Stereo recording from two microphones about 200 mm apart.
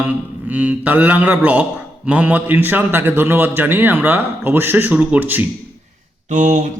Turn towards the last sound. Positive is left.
turn(degrees=-35)  # may be behind; listen again after turning